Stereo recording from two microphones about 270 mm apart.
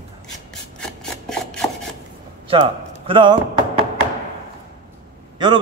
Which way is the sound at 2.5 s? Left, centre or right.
Centre.